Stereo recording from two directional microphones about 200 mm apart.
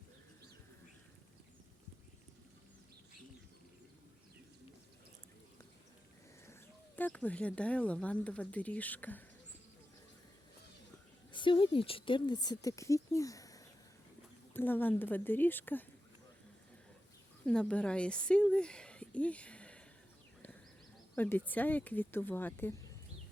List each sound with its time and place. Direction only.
6.5 s speech: 10° left (ahead or behind)
11.3 s speech: 25° left (ahead or behind)
17.4 s speech: 5° left (ahead or behind)
21.2 s speech: 10° left (ahead or behind)